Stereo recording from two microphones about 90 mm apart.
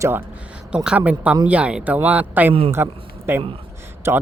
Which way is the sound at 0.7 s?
10° right (ahead or behind).